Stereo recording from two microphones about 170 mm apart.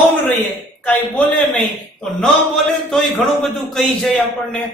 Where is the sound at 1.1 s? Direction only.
10° left (ahead or behind).